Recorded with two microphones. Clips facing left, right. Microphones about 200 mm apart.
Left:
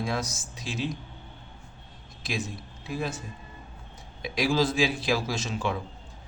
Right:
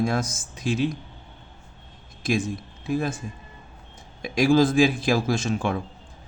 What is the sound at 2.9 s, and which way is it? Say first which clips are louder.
Speech: right 6 dB; 50° right (ahead or behind).